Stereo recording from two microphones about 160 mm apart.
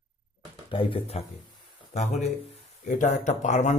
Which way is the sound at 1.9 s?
45° left (ahead or behind).